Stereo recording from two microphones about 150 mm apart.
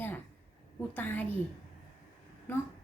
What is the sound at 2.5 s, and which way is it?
Speech, 15° left (ahead or behind).